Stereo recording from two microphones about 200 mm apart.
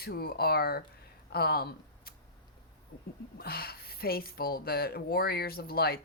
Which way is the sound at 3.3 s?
50° left (ahead or behind).